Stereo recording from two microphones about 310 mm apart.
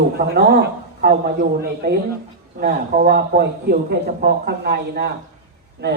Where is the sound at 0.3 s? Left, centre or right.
Right.